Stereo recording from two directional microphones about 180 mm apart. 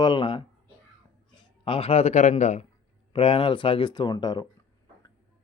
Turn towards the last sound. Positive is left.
turn(degrees=20)  # may be behind; listen again after turning